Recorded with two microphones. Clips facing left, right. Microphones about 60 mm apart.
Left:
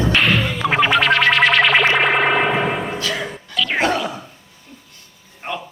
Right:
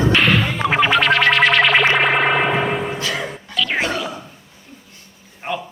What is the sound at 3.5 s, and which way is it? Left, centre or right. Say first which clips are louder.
Dog: left 2 dB; centre.